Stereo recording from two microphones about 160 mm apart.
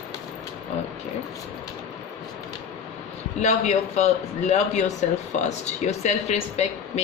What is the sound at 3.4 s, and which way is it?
A man's voice, 45° left (ahead or behind).